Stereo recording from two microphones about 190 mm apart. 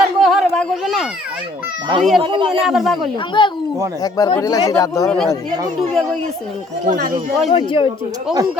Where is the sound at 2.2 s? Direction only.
25° right (ahead or behind).